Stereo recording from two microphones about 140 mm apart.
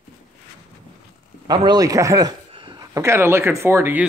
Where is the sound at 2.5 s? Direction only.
40° right (ahead or behind).